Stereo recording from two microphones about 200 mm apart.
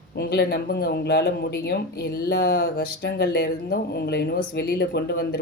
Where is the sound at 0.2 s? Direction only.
55° left (ahead or behind).